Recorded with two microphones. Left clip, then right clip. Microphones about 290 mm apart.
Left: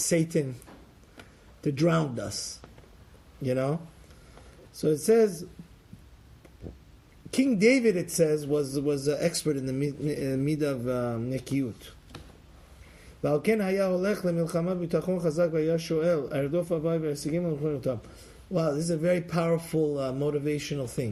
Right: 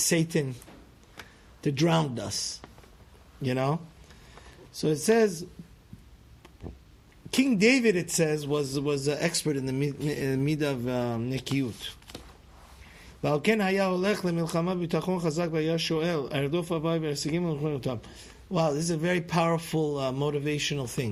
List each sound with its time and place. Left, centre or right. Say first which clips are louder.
0.1 s a man's voice: left 3 dB; right
1.6 s a man's voice: even; right
3.4 s a man's voice: even; right
7.3 s a man's voice: even; right
13.2 s a man's voice: even; right